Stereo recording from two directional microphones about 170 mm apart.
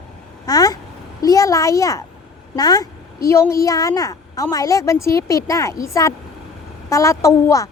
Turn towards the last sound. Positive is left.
turn(degrees=20)  # may be behind; listen again after turning